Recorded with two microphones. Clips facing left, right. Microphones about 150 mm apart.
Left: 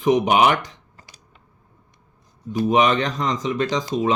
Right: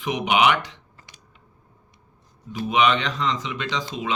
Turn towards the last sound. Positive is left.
turn(degrees=40)  # may be behind; listen again after turning